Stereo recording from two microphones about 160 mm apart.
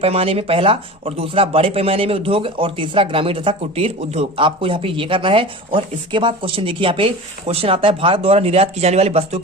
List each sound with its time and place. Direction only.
0.0 s speech: 40° right (ahead or behind)